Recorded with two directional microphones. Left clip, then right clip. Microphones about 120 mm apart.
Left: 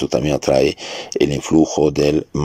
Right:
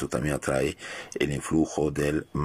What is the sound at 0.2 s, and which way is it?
Speech, 20° left (ahead or behind).